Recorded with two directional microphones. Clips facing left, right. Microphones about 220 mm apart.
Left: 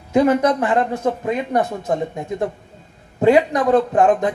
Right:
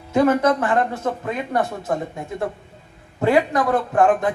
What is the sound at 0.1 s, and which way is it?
A man's voice, 15° left (ahead or behind).